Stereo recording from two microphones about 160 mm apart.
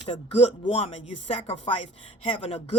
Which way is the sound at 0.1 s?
40° left (ahead or behind).